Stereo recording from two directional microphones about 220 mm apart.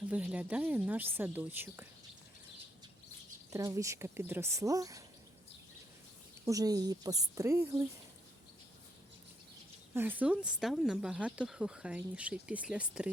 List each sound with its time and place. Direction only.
0.1 s a woman's voice: 5° right (ahead or behind)
3.5 s a woman's voice: 15° right (ahead or behind)
6.4 s a woman's voice: 15° right (ahead or behind)
9.9 s speech: 10° right (ahead or behind)